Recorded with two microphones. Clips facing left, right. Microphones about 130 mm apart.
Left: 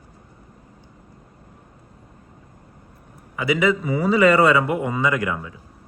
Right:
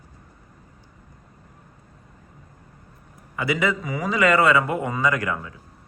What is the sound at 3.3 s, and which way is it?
Speech, 5° left (ahead or behind).